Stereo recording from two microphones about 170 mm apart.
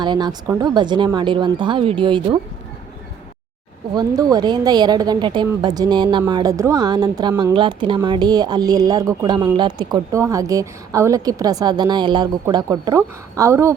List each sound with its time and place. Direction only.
0.0 s speech: 25° right (ahead or behind)
3.9 s speech: 25° right (ahead or behind)